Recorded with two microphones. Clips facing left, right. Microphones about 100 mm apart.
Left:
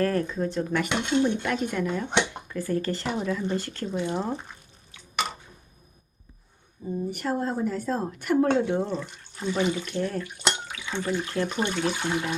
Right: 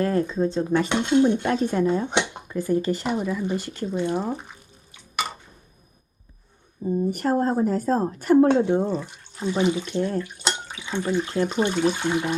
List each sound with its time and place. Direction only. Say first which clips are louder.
0.0 s speech: right 3 dB; 20° right (ahead or behind)
2.1 s speech: right 2 dB; 20° right (ahead or behind)
6.8 s a woman's voice: right 6 dB; 40° right (ahead or behind); by 12.3 s 20° right (ahead or behind)